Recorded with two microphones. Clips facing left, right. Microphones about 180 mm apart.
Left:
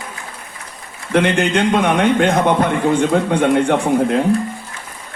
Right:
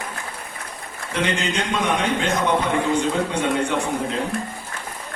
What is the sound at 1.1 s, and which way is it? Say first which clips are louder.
A man's voice: left 8 dB; 60° left (ahead or behind).